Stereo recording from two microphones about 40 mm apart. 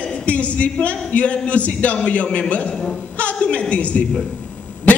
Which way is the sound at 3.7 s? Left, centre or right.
Left.